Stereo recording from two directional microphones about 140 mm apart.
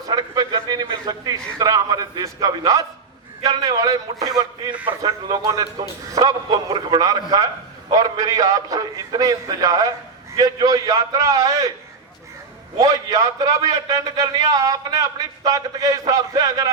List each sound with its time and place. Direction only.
0.1 s a man's voice: 30° right (ahead or behind)
12.8 s a man's voice: 25° right (ahead or behind)